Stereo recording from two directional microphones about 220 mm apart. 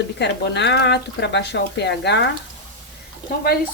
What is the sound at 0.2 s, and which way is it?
Speech, 50° left (ahead or behind).